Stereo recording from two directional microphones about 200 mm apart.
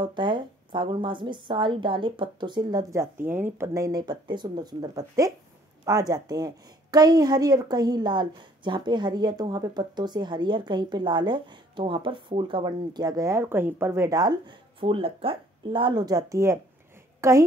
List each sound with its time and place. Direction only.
0.0 s a woman's voice: 25° right (ahead or behind)